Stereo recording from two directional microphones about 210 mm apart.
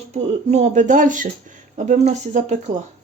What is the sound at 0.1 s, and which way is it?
Speech, 30° right (ahead or behind).